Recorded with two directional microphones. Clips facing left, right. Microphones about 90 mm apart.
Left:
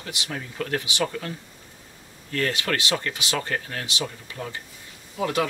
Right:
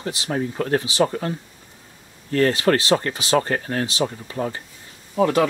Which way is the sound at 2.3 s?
35° right (ahead or behind).